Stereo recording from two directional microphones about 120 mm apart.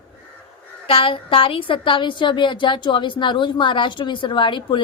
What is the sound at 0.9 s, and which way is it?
A woman's voice, 50° left (ahead or behind).